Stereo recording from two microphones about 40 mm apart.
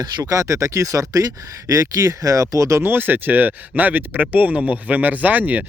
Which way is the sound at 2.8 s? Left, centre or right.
Right.